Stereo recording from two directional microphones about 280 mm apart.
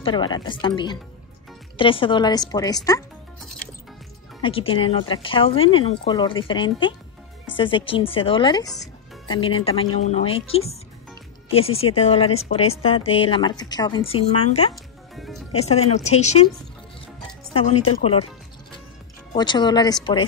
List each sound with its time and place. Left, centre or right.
0.0 s speech: centre
4.4 s a woman's voice: centre
14.7 s music: centre
15.6 s a woman's voice: left
18.0 s a woman's voice: left
19.3 s speech: centre